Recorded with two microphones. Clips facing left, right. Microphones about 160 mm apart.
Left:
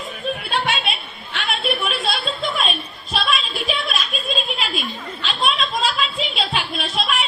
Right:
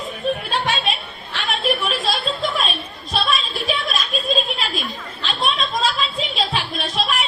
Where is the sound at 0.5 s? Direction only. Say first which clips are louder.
Right 1 dB; 40° right (ahead or behind).